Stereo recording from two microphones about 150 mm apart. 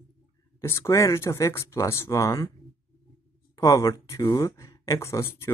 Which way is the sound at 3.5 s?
20° left (ahead or behind).